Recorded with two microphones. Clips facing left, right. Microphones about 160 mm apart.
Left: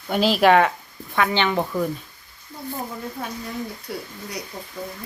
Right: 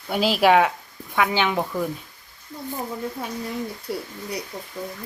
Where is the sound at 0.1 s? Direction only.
5° right (ahead or behind).